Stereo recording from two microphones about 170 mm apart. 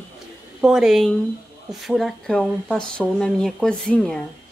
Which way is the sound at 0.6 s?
5° right (ahead or behind).